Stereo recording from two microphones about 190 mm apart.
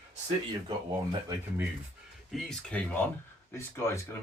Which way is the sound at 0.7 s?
25° right (ahead or behind).